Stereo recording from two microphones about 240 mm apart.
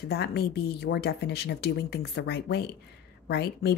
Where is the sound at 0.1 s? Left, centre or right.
Left.